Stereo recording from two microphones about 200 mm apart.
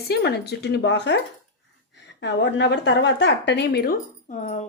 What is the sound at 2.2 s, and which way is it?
A woman's voice, 60° left (ahead or behind).